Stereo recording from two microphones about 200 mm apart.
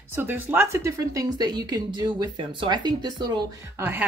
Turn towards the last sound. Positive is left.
turn(degrees=-10)  # may be behind; listen again after turning